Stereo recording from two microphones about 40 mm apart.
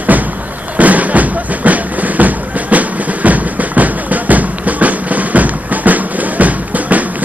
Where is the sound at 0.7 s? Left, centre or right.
Right.